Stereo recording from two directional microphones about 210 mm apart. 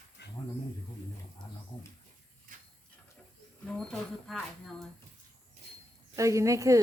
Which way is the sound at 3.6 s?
5° left (ahead or behind).